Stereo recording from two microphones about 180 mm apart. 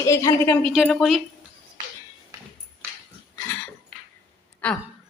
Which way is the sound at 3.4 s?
10° left (ahead or behind).